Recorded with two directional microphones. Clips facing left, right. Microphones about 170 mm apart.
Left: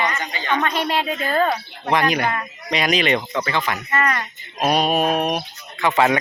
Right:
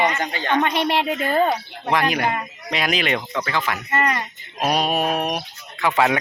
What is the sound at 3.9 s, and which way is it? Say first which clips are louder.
Speech: right 1 dB; 20° right (ahead or behind).